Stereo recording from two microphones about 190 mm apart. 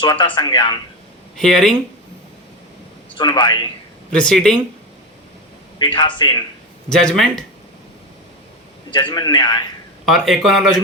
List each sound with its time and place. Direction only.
0.0 s a man's voice: 25° left (ahead or behind)
1.4 s speech: centre (ahead or behind)
3.2 s a man's voice: 25° left (ahead or behind)
4.1 s speech: 5° left (ahead or behind)
5.8 s a man's voice: 25° left (ahead or behind)
6.8 s speech: 5° left (ahead or behind)
8.9 s a man's voice: 25° left (ahead or behind)
10.1 s speech: centre (ahead or behind)